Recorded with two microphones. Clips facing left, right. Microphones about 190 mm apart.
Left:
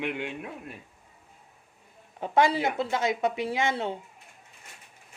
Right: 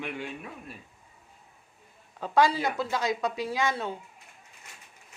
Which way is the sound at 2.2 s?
25° left (ahead or behind).